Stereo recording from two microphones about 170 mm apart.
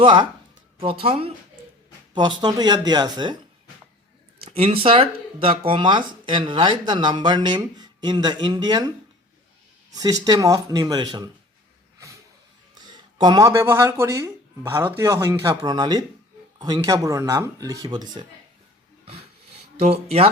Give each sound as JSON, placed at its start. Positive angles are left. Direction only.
{"t": 0.0, "sound": "speech", "side_deg": -30}
{"t": 4.4, "sound": "speech", "side_deg": -35}
{"t": 9.9, "sound": "speech", "side_deg": -20}
{"t": 13.1, "sound": "speech", "side_deg": -25}
{"t": 19.8, "sound": "speech", "side_deg": -35}